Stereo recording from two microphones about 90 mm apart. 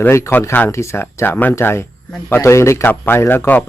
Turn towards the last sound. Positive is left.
turn(degrees=20)  # may be behind; listen again after turning